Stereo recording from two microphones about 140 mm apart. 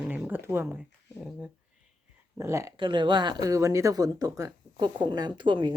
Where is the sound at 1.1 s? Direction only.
5° right (ahead or behind).